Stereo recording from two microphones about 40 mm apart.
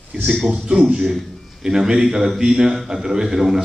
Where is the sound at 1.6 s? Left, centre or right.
Centre.